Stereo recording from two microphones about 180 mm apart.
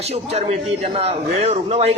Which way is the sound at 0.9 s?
35° right (ahead or behind).